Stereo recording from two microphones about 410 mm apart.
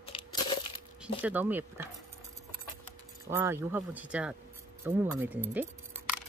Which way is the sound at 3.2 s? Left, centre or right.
Centre.